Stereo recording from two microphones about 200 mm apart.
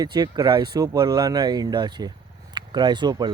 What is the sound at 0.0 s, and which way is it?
Speech, 20° right (ahead or behind).